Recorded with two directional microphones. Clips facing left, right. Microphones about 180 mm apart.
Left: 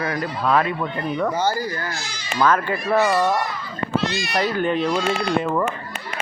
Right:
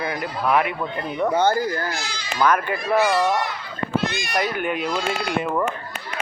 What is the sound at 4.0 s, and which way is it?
Speech, 50° right (ahead or behind).